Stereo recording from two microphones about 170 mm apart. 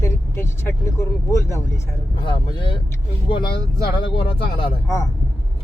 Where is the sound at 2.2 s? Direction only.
30° left (ahead or behind).